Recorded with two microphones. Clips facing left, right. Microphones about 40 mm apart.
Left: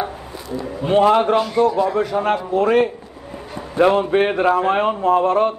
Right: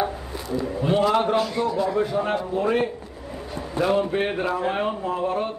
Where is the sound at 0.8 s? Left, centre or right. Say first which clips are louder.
Left 7 dB; left.